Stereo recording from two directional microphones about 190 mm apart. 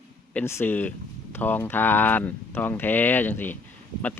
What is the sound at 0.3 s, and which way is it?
Speech, 10° left (ahead or behind).